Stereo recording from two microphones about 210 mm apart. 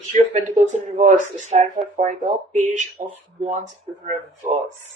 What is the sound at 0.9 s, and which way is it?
A woman's voice, 35° right (ahead or behind).